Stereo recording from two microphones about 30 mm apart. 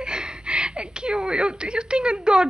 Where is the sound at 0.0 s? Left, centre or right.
Right.